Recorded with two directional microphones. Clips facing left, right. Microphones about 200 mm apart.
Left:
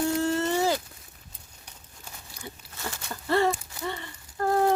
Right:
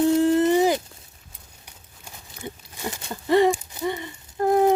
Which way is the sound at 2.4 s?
15° right (ahead or behind).